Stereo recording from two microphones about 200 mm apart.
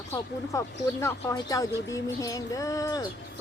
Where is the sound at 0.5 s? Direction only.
15° left (ahead or behind).